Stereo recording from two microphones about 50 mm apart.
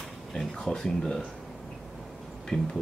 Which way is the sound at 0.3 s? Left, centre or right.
Centre.